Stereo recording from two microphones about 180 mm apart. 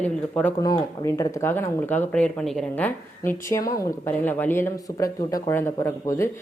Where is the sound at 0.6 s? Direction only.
20° left (ahead or behind).